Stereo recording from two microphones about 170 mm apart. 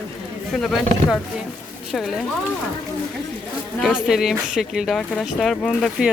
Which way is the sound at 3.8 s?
Centre (ahead or behind).